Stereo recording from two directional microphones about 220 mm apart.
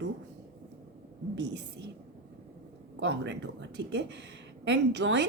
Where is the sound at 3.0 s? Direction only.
55° right (ahead or behind).